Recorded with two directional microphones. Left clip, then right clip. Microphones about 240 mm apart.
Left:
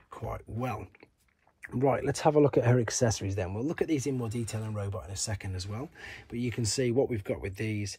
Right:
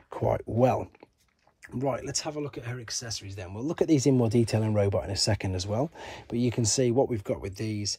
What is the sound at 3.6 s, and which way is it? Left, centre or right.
Speech, centre.